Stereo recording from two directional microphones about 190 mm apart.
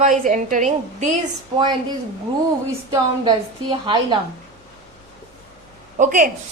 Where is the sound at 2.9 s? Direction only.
20° right (ahead or behind).